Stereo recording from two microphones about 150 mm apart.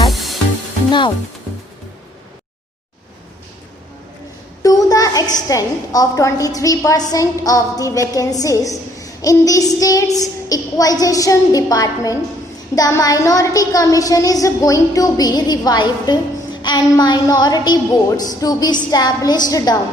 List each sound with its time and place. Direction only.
0.1 s music: centre (ahead or behind)
4.6 s a sound: 25° left (ahead or behind)
5.5 s a woman's voice: 25° left (ahead or behind)